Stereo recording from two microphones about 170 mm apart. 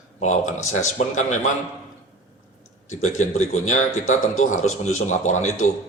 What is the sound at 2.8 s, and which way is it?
A man's voice, 45° left (ahead or behind).